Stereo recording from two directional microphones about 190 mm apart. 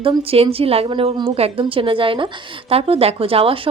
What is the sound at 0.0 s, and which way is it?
A woman's voice, 30° right (ahead or behind).